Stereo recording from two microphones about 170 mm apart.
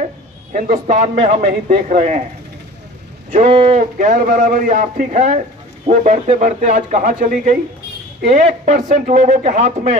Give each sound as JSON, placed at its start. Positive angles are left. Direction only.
{"t": 0.5, "sound": "a man's voice", "side_deg": -50}
{"t": 3.4, "sound": "speech", "side_deg": -35}
{"t": 4.0, "sound": "a man's voice", "side_deg": -50}